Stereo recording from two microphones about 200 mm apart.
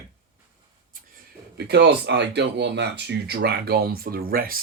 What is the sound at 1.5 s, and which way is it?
Speech, 55° right (ahead or behind).